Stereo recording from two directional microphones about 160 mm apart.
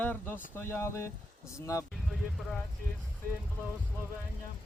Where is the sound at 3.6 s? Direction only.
10° right (ahead or behind).